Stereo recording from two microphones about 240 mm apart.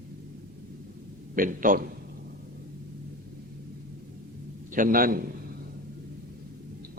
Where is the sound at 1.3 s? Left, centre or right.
Right.